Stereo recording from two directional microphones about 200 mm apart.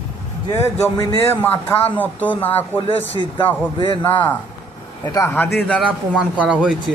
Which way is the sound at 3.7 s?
25° left (ahead or behind).